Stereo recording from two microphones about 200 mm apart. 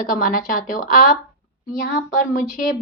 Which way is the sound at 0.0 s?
45° left (ahead or behind).